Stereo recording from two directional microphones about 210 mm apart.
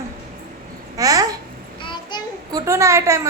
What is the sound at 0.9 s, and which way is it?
Babbling, 15° right (ahead or behind).